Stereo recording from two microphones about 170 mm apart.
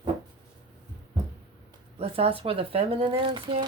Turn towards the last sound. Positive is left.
turn(degrees=-30)  # may be behind; listen again after turning